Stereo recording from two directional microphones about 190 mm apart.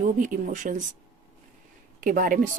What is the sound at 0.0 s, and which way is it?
Speech, 45° right (ahead or behind).